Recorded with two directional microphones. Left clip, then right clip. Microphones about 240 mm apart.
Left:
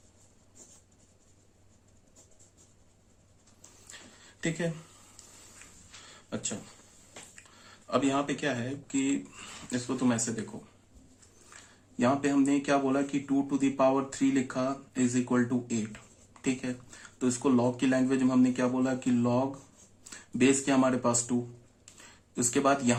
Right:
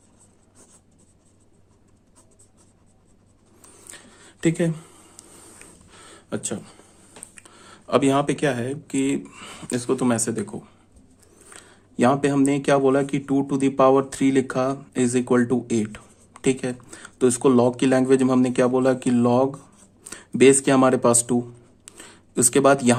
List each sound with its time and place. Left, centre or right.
4.4 s speech: right
6.1 s a sound: right
7.3 s speech: right
11.4 s speech: right
22.4 s speech: right